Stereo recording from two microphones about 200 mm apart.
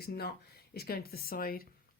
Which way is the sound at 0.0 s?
50° left (ahead or behind).